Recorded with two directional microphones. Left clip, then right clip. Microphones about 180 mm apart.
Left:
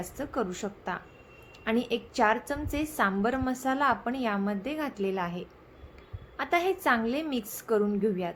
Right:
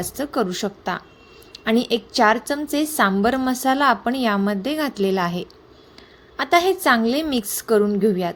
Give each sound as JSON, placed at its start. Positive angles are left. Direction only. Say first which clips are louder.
{"t": 0.2, "sound": "a woman's voice", "louder": "right 9 dB", "side_deg": -40}